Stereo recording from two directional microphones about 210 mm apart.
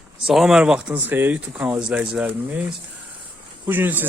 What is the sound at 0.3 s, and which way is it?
Speech, centre (ahead or behind).